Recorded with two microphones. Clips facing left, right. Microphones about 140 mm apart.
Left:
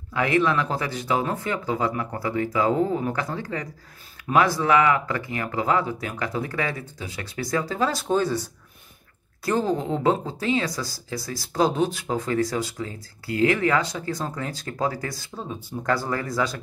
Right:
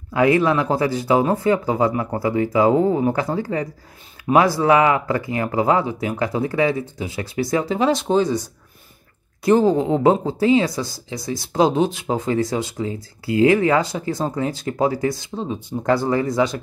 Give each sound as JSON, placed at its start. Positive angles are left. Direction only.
{"t": 0.1, "sound": "speech", "side_deg": -35}
{"t": 9.4, "sound": "speech", "side_deg": -25}